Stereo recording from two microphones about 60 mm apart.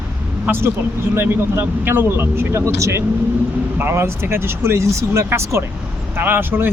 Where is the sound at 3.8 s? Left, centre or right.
Right.